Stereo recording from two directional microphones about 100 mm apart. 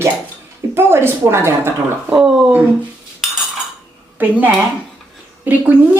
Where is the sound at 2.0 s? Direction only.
10° right (ahead or behind).